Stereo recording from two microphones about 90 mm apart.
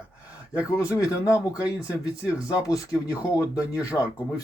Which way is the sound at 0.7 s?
35° left (ahead or behind).